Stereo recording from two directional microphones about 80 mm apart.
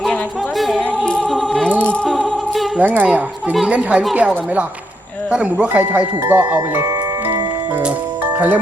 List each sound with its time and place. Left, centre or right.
0.8 s music: centre
2.7 s music: right
3.7 s speech: centre
6.2 s music: right